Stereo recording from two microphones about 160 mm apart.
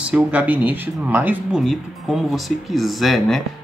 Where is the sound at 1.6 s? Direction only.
Centre (ahead or behind).